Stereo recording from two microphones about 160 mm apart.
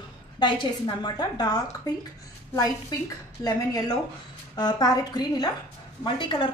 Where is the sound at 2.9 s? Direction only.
25° left (ahead or behind).